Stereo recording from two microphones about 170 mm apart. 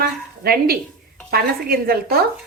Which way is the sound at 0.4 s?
65° right (ahead or behind).